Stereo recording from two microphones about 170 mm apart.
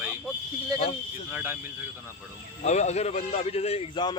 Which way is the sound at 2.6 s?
40° left (ahead or behind).